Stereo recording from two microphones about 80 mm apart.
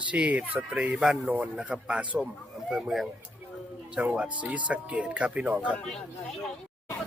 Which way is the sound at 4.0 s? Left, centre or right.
Centre.